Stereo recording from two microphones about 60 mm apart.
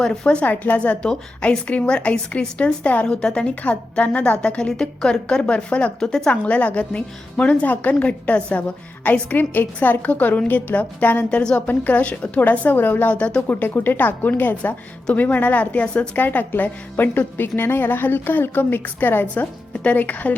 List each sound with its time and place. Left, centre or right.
0.4 s a woman's voice: left
3.1 s a woman's voice: centre
6.3 s a woman's voice: left
16.2 s a woman's voice: left